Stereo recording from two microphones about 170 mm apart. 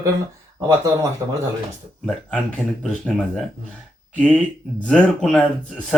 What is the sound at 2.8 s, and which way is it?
Speech, 5° left (ahead or behind).